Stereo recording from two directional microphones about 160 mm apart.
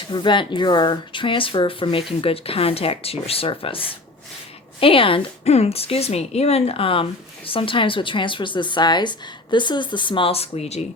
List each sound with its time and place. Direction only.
0.1 s a woman's voice: 30° left (ahead or behind)